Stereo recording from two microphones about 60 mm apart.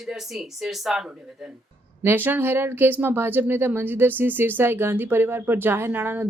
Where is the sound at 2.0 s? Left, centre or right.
Right.